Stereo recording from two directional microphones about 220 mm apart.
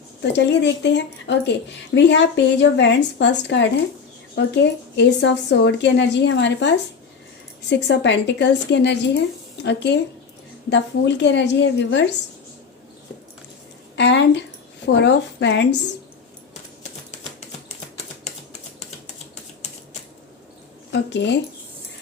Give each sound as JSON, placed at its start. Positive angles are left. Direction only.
{"t": 0.2, "sound": "a woman's voice", "side_deg": 50}
{"t": 13.9, "sound": "a woman's voice", "side_deg": 55}
{"t": 20.9, "sound": "speech", "side_deg": 55}